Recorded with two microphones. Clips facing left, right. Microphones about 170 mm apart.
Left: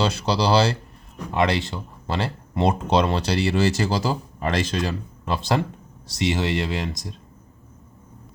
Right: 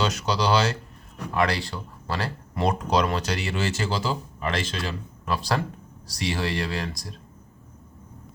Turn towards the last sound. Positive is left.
turn(degrees=20)  # may be behind; listen again after turning